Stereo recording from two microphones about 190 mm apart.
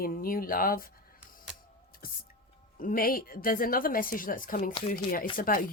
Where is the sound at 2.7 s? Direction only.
50° left (ahead or behind).